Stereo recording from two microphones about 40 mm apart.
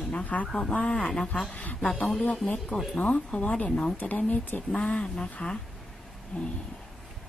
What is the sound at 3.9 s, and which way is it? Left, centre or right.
Speech, left.